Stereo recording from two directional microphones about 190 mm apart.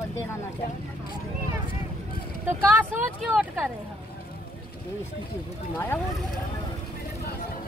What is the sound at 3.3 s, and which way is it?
Speech, centre (ahead or behind).